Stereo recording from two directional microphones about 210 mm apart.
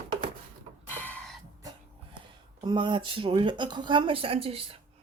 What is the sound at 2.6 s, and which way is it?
Speech, 20° right (ahead or behind).